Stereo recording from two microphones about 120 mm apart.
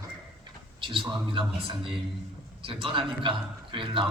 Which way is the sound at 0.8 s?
45° right (ahead or behind).